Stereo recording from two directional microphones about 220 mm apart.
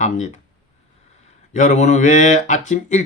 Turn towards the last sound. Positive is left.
turn(degrees=35)  # may be behind; listen again after turning